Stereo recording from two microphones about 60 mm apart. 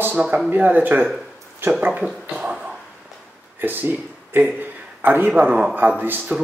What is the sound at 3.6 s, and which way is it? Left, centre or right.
A man's voice, right.